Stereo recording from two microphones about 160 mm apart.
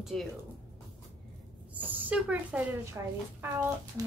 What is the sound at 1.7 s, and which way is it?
A woman's voice, 10° right (ahead or behind).